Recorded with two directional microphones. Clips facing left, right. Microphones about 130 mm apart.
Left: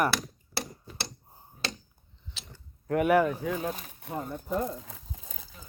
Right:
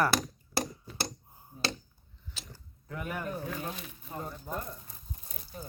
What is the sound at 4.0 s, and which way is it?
Speech, 70° left (ahead or behind).